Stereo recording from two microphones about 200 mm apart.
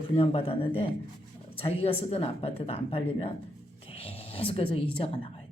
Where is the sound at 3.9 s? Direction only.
30° left (ahead or behind).